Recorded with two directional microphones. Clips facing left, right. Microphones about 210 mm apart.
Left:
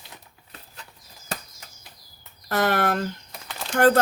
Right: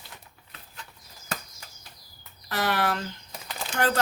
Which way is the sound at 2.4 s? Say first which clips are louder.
Left 4 dB; 50° left (ahead or behind).